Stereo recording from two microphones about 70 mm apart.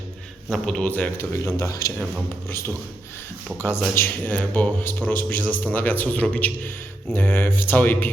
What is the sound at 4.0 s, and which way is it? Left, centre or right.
A man's voice, left.